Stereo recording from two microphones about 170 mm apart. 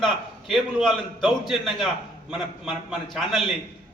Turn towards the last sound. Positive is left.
turn(degrees=0)  # may be behind; listen again after turning